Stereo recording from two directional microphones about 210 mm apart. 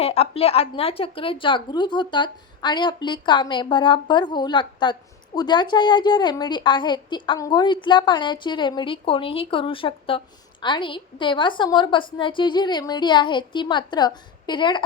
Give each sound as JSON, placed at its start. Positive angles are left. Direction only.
{"t": 0.0, "sound": "a woman's voice", "side_deg": 30}